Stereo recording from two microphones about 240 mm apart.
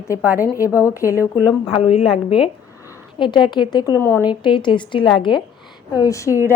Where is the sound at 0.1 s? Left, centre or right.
Centre.